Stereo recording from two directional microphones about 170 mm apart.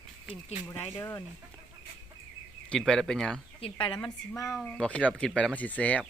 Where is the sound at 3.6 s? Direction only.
30° left (ahead or behind).